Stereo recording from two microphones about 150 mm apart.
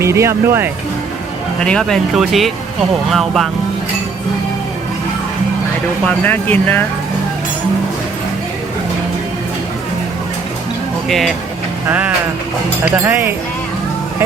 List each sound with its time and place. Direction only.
0.0 s speech: 20° right (ahead or behind)
1.6 s speech: 5° left (ahead or behind)
6.1 s speech: 10° left (ahead or behind)
11.1 s speech: centre (ahead or behind)
11.9 s speech: 10° right (ahead or behind)